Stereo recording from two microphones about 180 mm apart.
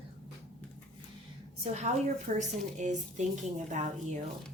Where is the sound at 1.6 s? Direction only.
40° right (ahead or behind).